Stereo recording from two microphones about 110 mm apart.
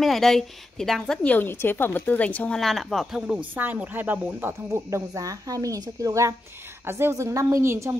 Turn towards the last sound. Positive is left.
turn(degrees=-25)  # may be behind; listen again after turning